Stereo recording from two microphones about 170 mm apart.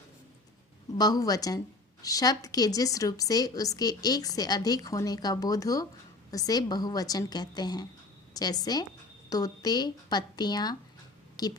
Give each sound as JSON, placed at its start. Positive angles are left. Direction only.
{"t": 0.9, "sound": "a woman's voice", "side_deg": 25}